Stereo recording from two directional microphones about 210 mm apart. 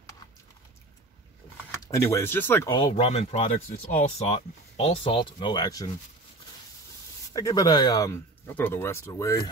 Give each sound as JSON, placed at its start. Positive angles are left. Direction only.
{"t": 1.9, "sound": "speech", "side_deg": 15}
{"t": 7.3, "sound": "speech", "side_deg": 15}